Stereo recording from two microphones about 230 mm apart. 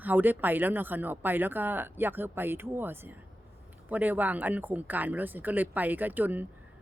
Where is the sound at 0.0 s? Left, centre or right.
Centre.